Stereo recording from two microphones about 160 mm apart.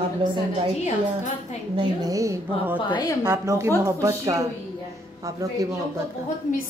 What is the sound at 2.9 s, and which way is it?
Speech, 25° left (ahead or behind).